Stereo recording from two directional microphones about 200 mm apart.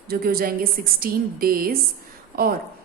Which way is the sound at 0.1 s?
50° right (ahead or behind).